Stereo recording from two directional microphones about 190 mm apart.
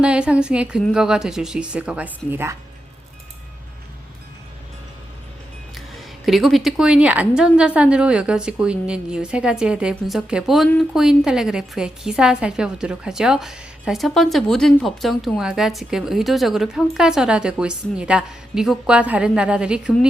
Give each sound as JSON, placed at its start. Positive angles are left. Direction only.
{"t": 0.0, "sound": "a woman's voice", "side_deg": -5}
{"t": 5.7, "sound": "a woman's voice", "side_deg": 0}